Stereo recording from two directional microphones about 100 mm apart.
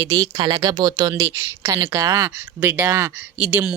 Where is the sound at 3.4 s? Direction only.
10° right (ahead or behind).